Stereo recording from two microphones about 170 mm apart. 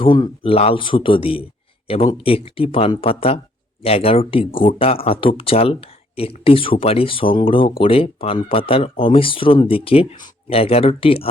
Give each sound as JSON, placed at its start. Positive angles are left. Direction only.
{"t": 0.0, "sound": "speech", "side_deg": 30}